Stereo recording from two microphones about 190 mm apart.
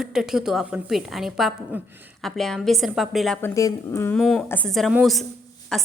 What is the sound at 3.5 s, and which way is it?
Speech, 15° left (ahead or behind).